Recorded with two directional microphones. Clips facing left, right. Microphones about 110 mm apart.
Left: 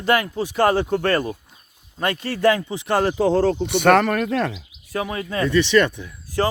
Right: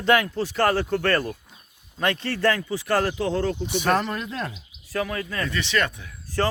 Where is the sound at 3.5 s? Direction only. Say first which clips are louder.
Left 7 dB; 60° left (ahead or behind); by 4.6 s 85° left.